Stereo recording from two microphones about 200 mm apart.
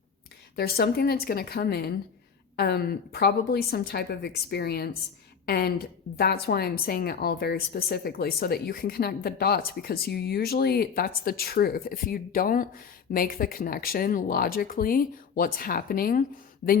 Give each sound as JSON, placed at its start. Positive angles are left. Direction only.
{"t": 0.5, "sound": "a woman's voice", "side_deg": 50}